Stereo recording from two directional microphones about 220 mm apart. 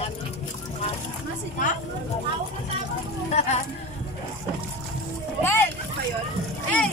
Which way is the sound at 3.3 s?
30° left (ahead or behind).